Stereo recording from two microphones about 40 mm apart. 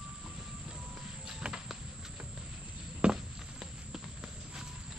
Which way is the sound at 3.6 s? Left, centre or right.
Centre.